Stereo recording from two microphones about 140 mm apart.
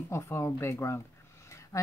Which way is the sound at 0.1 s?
20° left (ahead or behind).